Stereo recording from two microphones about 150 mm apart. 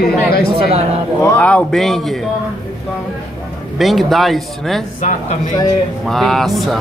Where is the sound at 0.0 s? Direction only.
90° left.